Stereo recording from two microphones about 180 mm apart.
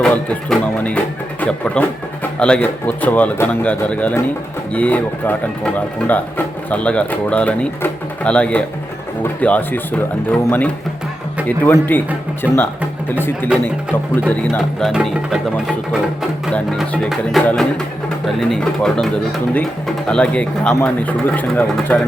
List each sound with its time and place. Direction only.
0.0 s speech: 5° left (ahead or behind)